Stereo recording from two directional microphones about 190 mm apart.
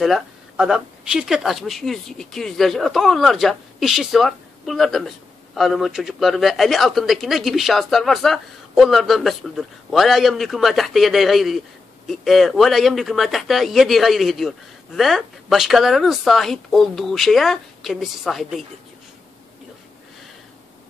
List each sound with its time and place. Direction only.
0.0 s speech: centre (ahead or behind)